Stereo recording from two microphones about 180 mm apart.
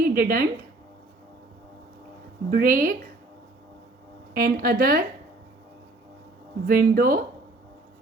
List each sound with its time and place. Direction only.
0.0 s a woman's voice: 55° right (ahead or behind)
2.5 s speech: 55° right (ahead or behind)
4.4 s a woman's voice: 55° right (ahead or behind)
6.7 s speech: 55° right (ahead or behind)